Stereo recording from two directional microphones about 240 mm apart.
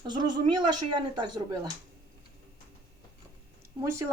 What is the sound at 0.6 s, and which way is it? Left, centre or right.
Speech, right.